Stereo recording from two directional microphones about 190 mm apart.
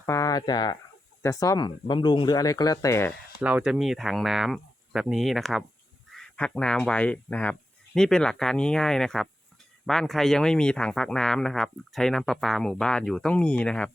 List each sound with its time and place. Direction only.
0.0 s speech: 15° left (ahead or behind)
3.4 s speech: 5° right (ahead or behind)